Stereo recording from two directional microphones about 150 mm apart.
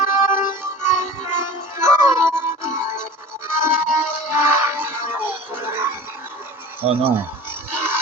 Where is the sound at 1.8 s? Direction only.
15° right (ahead or behind).